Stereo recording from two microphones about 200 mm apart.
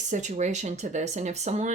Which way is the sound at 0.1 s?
35° right (ahead or behind).